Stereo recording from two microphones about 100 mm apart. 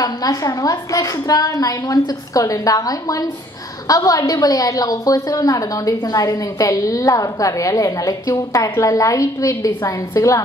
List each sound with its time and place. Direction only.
0.0 s a woman's voice: 35° left (ahead or behind)